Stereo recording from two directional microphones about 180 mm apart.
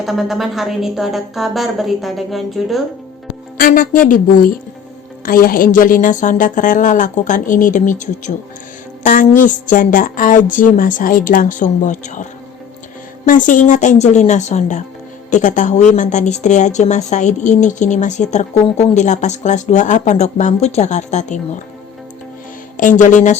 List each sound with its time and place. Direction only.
0.0 s a woman's voice: centre (ahead or behind)
3.6 s a woman's voice: 50° left (ahead or behind)
5.2 s a woman's voice: 50° left (ahead or behind)
22.8 s a woman's voice: 45° left (ahead or behind)